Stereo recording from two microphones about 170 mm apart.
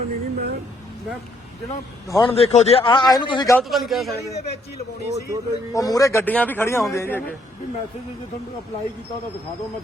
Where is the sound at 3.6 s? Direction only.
Centre (ahead or behind).